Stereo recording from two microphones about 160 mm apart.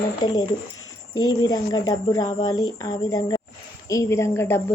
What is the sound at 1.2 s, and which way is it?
A woman's voice, 25° left (ahead or behind).